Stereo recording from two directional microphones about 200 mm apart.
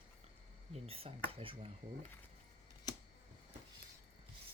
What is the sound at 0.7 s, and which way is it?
Speech, 30° right (ahead or behind).